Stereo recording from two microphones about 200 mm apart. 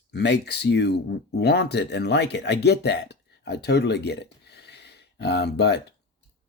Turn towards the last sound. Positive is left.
turn(degrees=55)  # may be behind; listen again after turning